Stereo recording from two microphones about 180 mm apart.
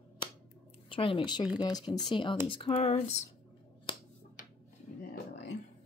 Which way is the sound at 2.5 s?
35° left (ahead or behind).